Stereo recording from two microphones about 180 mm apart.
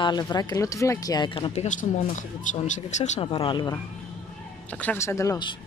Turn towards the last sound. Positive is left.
turn(degrees=20)  # may be behind; listen again after turning